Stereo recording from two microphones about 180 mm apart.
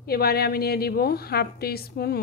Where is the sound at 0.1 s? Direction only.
60° left (ahead or behind).